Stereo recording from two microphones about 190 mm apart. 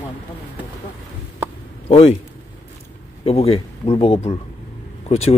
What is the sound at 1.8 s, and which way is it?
Speech, 30° left (ahead or behind).